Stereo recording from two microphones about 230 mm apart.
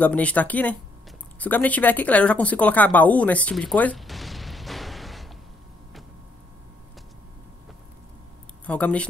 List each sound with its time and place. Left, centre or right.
0.0 s speech: centre
8.6 s speech: centre